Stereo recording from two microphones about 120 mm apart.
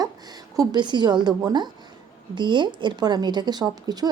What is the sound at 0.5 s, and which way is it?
A woman's voice, 30° right (ahead or behind).